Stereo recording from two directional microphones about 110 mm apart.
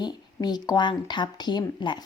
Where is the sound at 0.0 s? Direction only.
40° left (ahead or behind).